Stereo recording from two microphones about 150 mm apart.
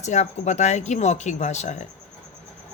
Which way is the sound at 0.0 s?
50° left (ahead or behind).